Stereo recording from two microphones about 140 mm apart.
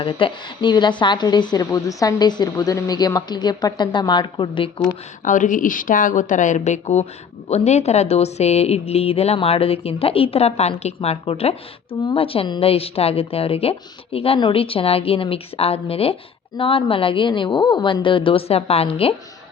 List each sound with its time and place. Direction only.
0.0 s a woman's voice: 35° left (ahead or behind)
5.2 s a woman's voice: 65° left (ahead or behind); by 19.1 s 45° left (ahead or behind)